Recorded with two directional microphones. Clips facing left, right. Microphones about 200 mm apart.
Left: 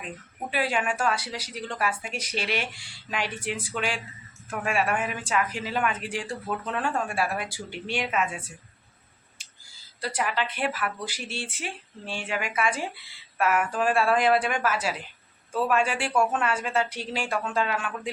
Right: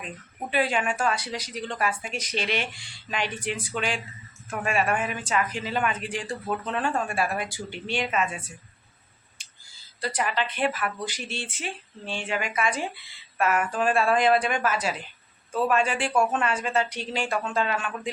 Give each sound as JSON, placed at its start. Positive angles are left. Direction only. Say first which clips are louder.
{"t": 0.5, "sound": "speech", "louder": "right 2 dB", "side_deg": 5}
{"t": 10.0, "sound": "speech", "louder": "right 1 dB", "side_deg": 10}